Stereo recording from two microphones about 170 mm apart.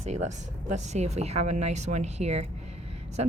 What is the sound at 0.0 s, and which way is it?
Speech, 40° right (ahead or behind).